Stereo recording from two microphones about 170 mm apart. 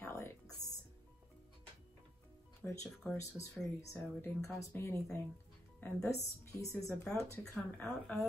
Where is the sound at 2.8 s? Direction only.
5° left (ahead or behind).